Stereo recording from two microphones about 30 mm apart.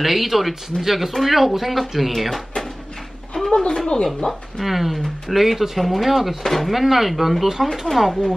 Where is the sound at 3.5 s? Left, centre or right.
Left.